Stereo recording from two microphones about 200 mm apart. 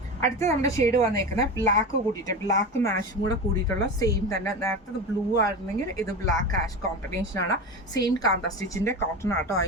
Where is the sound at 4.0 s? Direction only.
15° left (ahead or behind).